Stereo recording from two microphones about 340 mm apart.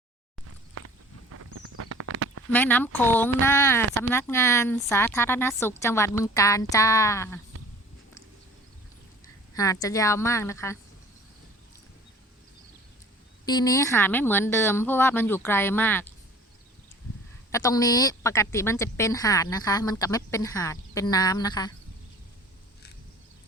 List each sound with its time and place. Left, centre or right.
1.3 s a sound: right
2.5 s a woman's voice: centre
9.6 s a woman's voice: centre
13.4 s a woman's voice: centre
17.5 s a woman's voice: centre